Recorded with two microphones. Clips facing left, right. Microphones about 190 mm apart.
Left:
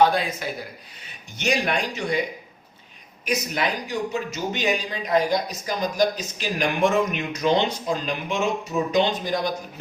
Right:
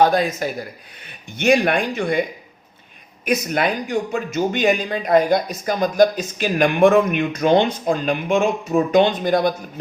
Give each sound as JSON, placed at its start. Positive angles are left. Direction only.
{"t": 0.0, "sound": "a man's voice", "side_deg": -45}
{"t": 1.0, "sound": "a man's voice", "side_deg": -55}
{"t": 3.2, "sound": "a man's voice", "side_deg": -55}